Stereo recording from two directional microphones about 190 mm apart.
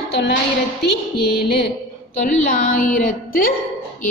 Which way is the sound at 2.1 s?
40° left (ahead or behind).